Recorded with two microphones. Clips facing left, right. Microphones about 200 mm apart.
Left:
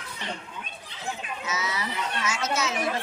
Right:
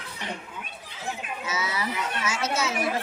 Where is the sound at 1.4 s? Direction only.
30° right (ahead or behind).